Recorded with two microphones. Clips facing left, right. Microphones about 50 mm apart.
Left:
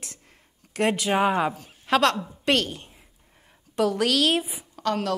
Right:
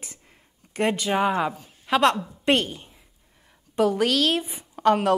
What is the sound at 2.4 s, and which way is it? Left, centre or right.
Speech, centre.